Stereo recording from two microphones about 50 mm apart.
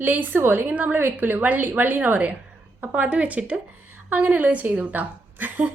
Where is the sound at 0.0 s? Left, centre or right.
Right.